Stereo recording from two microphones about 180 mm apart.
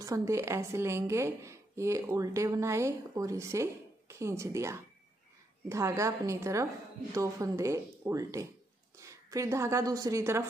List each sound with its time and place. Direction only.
0.0 s a woman's voice: 15° right (ahead or behind)